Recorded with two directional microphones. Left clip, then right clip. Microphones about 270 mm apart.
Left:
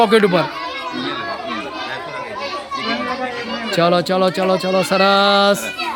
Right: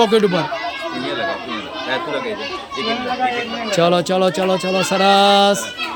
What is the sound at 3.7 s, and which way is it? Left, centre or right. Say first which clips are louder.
Speech: even; centre.